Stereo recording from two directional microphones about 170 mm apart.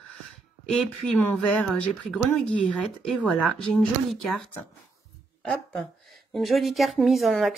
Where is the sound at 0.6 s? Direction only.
5° left (ahead or behind).